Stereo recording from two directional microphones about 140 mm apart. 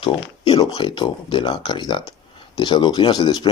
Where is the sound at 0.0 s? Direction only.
30° left (ahead or behind).